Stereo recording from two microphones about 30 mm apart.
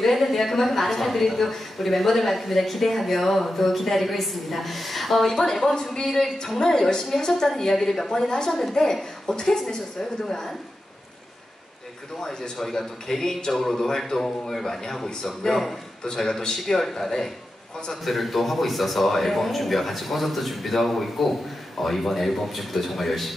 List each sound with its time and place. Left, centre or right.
0.0 s speech: centre
6.5 s a man's voice: centre
8.3 s a woman's voice: left
12.5 s a man's voice: centre
18.0 s speech: centre